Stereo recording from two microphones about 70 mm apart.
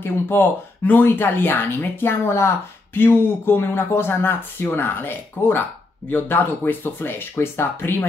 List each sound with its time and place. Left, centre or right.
0.0 s speech: left